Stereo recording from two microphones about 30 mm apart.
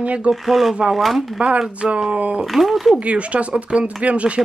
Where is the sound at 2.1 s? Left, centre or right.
Right.